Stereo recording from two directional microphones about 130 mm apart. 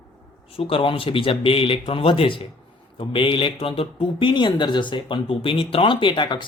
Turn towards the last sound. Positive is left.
turn(degrees=35)  # may be behind; listen again after turning